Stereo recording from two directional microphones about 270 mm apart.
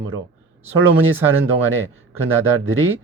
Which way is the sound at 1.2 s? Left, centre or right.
Centre.